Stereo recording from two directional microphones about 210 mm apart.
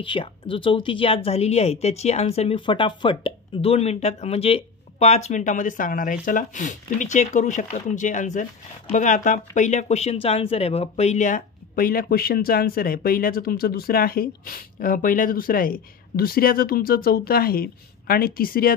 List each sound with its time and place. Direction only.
0.0 s a woman's voice: 25° left (ahead or behind); by 18.7 s 45° left (ahead or behind)